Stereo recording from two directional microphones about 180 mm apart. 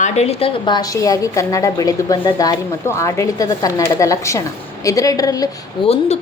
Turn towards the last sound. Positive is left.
turn(degrees=35)  # may be behind; listen again after turning